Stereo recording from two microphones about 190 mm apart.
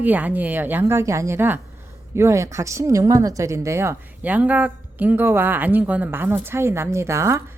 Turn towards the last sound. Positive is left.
turn(degrees=-15)  # may be behind; listen again after turning